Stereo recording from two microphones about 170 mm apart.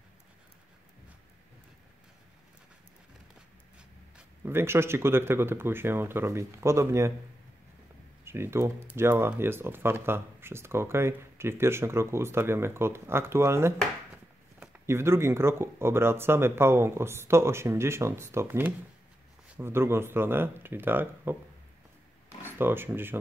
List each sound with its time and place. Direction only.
3.7 s speech: 10° right (ahead or behind)
8.3 s speech: 15° right (ahead or behind)
22.4 s speech: 10° right (ahead or behind)